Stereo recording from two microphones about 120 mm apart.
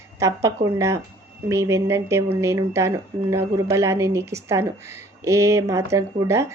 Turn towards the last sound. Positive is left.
turn(degrees=-25)  # may be behind; listen again after turning